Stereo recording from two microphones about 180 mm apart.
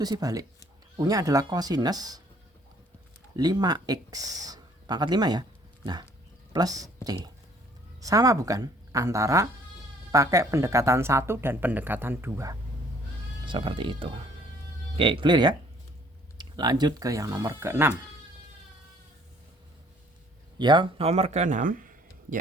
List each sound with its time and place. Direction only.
0.0 s speech: 20° right (ahead or behind)
3.3 s speech: 20° right (ahead or behind)
13.4 s speech: 30° right (ahead or behind); by 17.9 s 15° right (ahead or behind)
20.6 s speech: 25° right (ahead or behind); by 22.4 s 50° right (ahead or behind)